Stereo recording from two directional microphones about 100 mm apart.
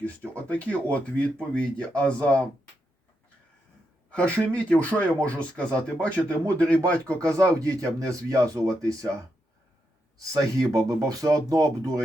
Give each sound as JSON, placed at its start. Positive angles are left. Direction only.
{"t": 0.0, "sound": "speech", "side_deg": 15}
{"t": 4.1, "sound": "speech", "side_deg": 15}
{"t": 7.2, "sound": "speech", "side_deg": -35}
{"t": 10.3, "sound": "speech", "side_deg": -35}